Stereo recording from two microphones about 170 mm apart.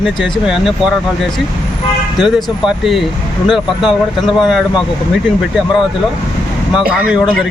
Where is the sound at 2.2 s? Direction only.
Centre (ahead or behind).